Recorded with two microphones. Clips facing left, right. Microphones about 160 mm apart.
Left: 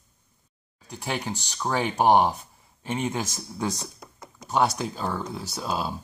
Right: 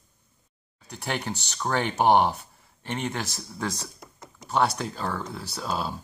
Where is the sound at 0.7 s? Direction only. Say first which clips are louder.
Even; 10° left (ahead or behind).